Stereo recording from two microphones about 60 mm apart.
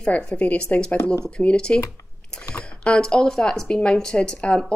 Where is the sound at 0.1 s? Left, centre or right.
Centre.